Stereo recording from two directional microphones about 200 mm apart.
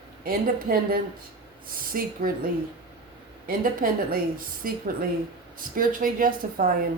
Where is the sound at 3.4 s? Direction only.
45° right (ahead or behind).